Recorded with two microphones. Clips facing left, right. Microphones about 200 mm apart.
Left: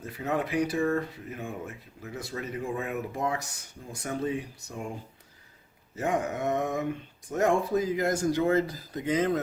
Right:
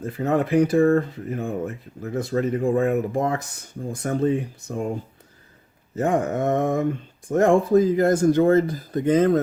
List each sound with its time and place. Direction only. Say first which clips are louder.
0.0 s speech: right 8 dB; 50° right (ahead or behind)
6.0 s speech: right 7 dB; 50° right (ahead or behind)